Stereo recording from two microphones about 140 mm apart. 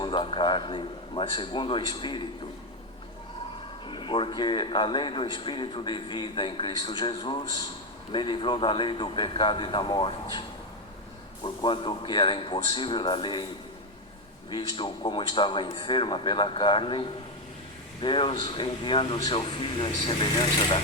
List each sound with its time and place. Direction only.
0.0 s speech: 35° left (ahead or behind)
3.8 s speech: 35° left (ahead or behind)
11.4 s speech: 35° left (ahead or behind)
14.5 s speech: 35° left (ahead or behind)